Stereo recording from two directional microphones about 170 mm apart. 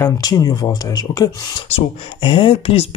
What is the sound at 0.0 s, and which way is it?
Speech, 20° left (ahead or behind).